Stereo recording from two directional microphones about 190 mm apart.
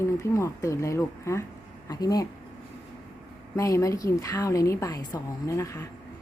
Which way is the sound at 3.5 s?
15° left (ahead or behind).